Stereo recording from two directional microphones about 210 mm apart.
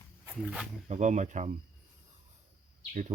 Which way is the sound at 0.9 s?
35° right (ahead or behind).